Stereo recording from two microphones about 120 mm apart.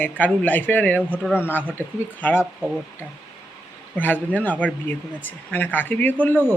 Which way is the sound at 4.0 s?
15° left (ahead or behind).